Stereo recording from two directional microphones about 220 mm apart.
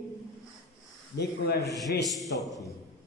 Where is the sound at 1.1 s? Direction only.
50° left (ahead or behind).